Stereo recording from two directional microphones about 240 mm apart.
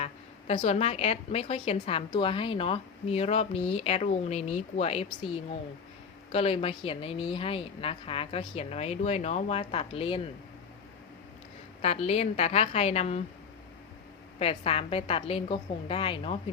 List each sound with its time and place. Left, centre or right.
0.0 s a woman's voice: left
11.8 s a woman's voice: left
14.3 s a woman's voice: left